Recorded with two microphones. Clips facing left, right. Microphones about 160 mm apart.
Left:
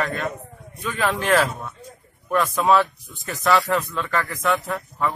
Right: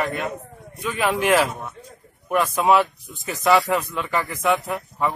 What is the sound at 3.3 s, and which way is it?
Speech, 20° right (ahead or behind).